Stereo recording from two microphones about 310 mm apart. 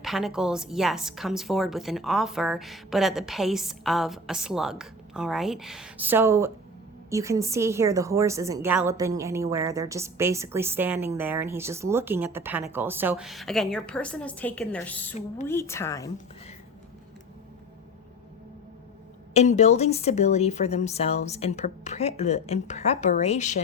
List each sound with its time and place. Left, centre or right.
0.0 s a woman's voice: centre
19.3 s a woman's voice: left